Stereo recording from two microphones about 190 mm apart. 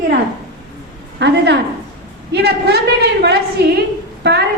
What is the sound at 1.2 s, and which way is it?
A woman's voice, 65° right (ahead or behind).